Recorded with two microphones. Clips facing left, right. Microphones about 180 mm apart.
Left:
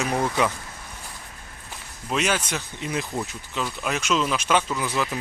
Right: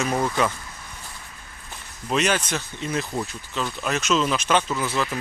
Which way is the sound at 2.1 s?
5° left (ahead or behind).